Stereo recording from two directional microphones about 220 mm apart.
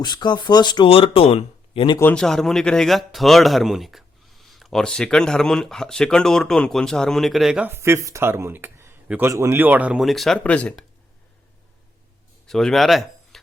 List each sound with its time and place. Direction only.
0.0 s speech: 20° left (ahead or behind)
2.0 s speech: 5° left (ahead or behind)
12.5 s speech: centre (ahead or behind)